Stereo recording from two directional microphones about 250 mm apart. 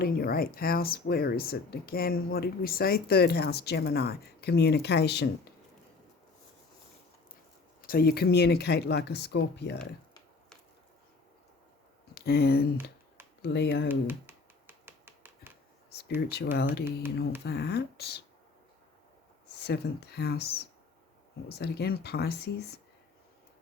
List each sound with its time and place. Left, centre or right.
0.0 s speech: left
7.8 s speech: left
12.1 s speech: left
13.8 s finger snapping: centre
15.9 s a sound: left
16.3 s speech: left
19.6 s speech: left